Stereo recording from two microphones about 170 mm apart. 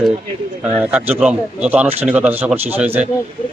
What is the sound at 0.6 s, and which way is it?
A man's voice, 5° right (ahead or behind).